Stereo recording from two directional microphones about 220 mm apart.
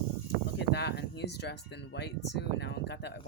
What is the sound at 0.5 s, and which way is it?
Speech, 50° left (ahead or behind).